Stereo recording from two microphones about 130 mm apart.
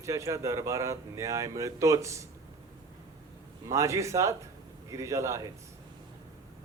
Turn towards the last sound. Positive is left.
turn(degrees=-25)  # may be behind; listen again after turning